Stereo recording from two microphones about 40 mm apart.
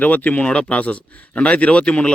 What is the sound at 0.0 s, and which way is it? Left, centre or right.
Speech, left.